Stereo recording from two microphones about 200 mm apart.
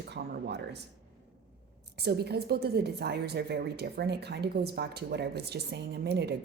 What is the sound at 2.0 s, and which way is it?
A woman's voice, 55° right (ahead or behind).